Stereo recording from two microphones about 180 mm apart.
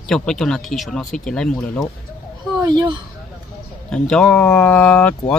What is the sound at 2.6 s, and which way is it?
Speech, 20° right (ahead or behind).